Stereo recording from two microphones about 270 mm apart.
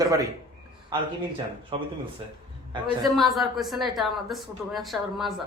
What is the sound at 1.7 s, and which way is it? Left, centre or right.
Speech, centre.